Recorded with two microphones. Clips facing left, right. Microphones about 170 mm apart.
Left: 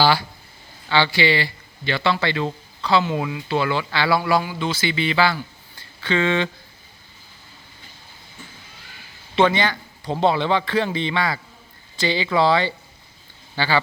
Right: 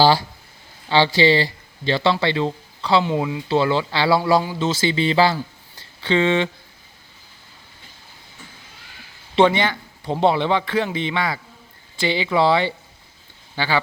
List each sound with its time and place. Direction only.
0.9 s speech: 35° right (ahead or behind)
6.0 s a man's voice: 25° right (ahead or behind)
9.3 s a man's voice: 20° right (ahead or behind)